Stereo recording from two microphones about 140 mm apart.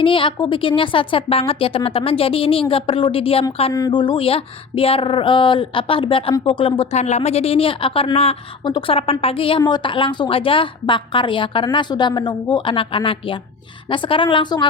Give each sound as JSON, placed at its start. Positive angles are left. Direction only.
{"t": 0.0, "sound": "a woman's voice", "side_deg": 40}
{"t": 3.7, "sound": "speech", "side_deg": 25}
{"t": 3.9, "sound": "a woman's voice", "side_deg": 35}
{"t": 7.0, "sound": "a woman's voice", "side_deg": 50}